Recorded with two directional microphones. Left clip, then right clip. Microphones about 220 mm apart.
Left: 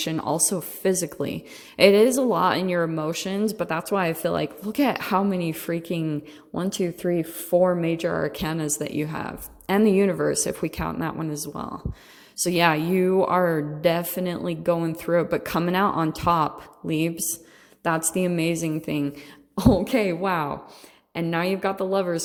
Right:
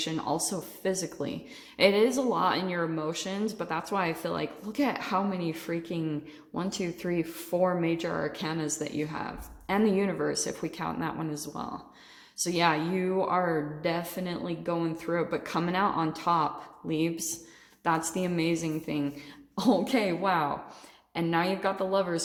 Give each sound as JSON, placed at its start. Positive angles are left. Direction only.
{"t": 0.0, "sound": "a woman's voice", "side_deg": 35}